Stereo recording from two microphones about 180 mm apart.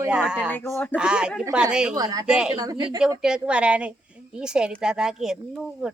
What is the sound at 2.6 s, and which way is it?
Speech, 25° right (ahead or behind).